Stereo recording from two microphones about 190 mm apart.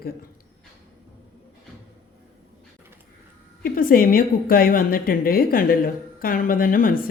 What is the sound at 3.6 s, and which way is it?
Speech, 50° left (ahead or behind).